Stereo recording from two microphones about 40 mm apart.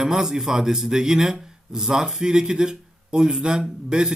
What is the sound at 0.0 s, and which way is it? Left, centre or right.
Speech, centre.